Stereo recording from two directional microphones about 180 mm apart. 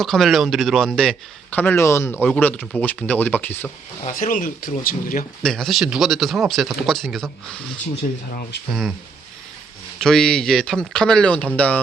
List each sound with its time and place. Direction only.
0.0 s speech: centre (ahead or behind)
4.0 s speech: 45° left (ahead or behind)
5.4 s speech: 5° left (ahead or behind)
8.0 s speech: 50° left (ahead or behind)
10.0 s speech: 5° left (ahead or behind)